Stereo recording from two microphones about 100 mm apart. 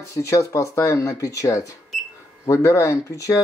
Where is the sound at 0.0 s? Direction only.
30° left (ahead or behind).